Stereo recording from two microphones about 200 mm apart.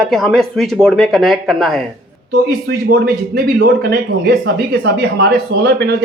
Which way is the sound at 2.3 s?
55° right (ahead or behind).